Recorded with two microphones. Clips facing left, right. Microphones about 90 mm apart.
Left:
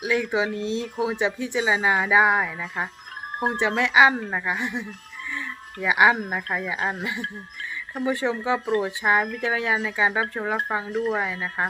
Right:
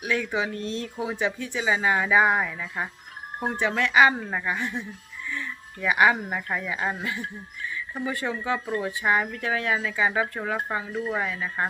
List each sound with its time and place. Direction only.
0.0 s speech: 15° left (ahead or behind)